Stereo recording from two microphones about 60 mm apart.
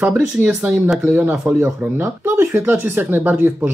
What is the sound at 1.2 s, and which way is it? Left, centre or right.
Speech, right.